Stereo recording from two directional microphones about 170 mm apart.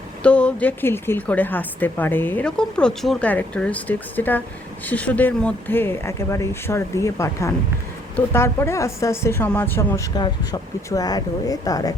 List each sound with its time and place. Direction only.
0.2 s a woman's voice: 5° left (ahead or behind)
10.2 s speech: 25° left (ahead or behind)